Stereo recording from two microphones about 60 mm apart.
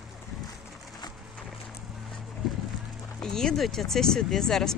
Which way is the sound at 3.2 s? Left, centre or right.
Centre.